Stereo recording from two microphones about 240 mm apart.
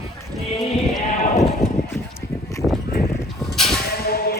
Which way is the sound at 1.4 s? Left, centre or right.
Centre.